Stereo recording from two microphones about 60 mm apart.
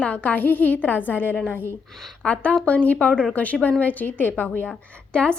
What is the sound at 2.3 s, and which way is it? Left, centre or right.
A woman's voice, left.